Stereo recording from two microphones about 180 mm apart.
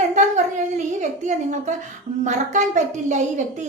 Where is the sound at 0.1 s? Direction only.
40° right (ahead or behind).